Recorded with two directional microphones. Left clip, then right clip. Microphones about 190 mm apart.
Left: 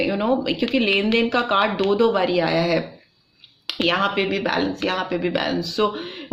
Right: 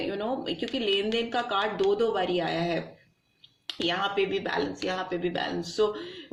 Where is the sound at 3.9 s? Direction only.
35° left (ahead or behind).